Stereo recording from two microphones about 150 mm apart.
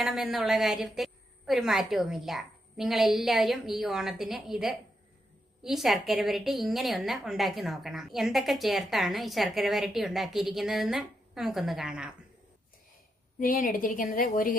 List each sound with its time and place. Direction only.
0.0 s a woman's voice: centre (ahead or behind)
13.4 s a woman's voice: 65° left (ahead or behind)